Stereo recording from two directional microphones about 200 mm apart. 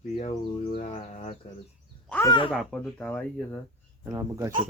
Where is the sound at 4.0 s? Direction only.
15° right (ahead or behind).